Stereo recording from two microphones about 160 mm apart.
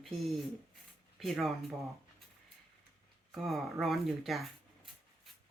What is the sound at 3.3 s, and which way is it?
Speech, centre (ahead or behind).